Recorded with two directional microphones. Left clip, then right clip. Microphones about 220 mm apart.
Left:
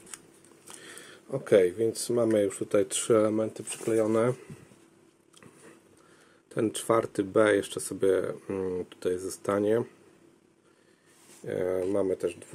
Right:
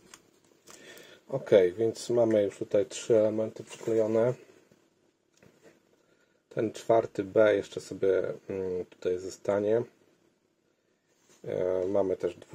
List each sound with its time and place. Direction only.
1.3 s speech: 10° left (ahead or behind)
2.7 s speech: 25° left (ahead or behind)
6.5 s speech: 20° left (ahead or behind)
11.4 s speech: 15° left (ahead or behind)